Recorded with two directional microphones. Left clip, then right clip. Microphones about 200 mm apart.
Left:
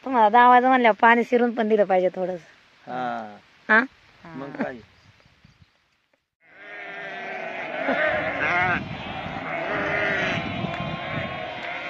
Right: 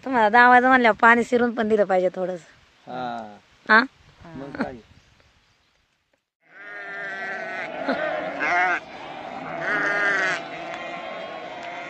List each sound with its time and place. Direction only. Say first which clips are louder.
0.0 s speech: even; 5° right (ahead or behind)
8.0 s sheep: left 3 dB; 20° left (ahead or behind)
8.4 s sheep: right 5 dB; 45° right (ahead or behind)
8.8 s sheep: left 2 dB; centre (ahead or behind)
9.8 s sheep: right 2 dB; 30° right (ahead or behind)
10.4 s run: left 2 dB; centre (ahead or behind)